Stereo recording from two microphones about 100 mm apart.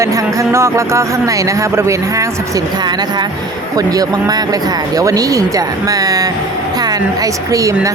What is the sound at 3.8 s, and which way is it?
Speech, 40° right (ahead or behind).